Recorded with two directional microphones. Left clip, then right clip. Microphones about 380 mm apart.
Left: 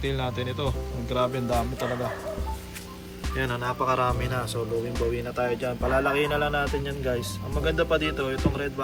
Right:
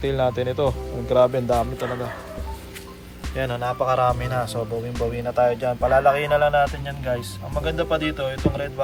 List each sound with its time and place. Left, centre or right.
0.0 s speech: centre
3.3 s speech: centre